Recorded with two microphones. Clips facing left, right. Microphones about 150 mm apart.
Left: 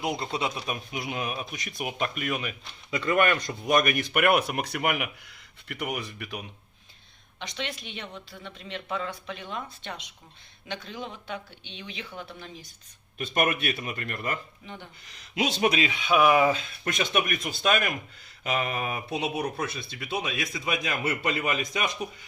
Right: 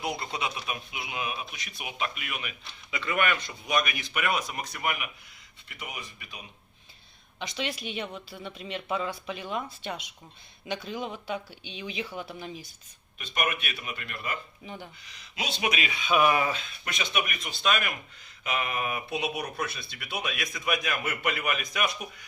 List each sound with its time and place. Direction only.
0.0 s speech: 25° left (ahead or behind)
0.6 s speech: 40° left (ahead or behind); by 6.4 s 70° left (ahead or behind)
7.3 s speech: 5° right (ahead or behind)
13.1 s speech: 50° left (ahead or behind)
15.4 s speech: 45° left (ahead or behind)
16.0 s speech: 15° left (ahead or behind)
16.5 s speech: 35° left (ahead or behind)
17.0 s speech: 45° left (ahead or behind); by 22.0 s 25° left (ahead or behind)